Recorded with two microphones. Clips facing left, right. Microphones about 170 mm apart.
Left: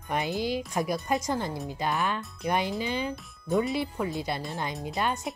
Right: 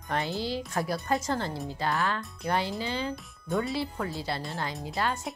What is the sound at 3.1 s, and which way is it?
Speech, centre (ahead or behind).